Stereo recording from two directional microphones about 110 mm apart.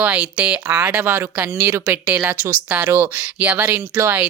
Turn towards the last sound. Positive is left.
turn(degrees=-20)  # may be behind; listen again after turning